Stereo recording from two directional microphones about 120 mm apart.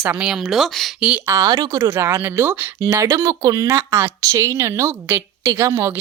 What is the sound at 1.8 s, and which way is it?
Speech, 20° right (ahead or behind).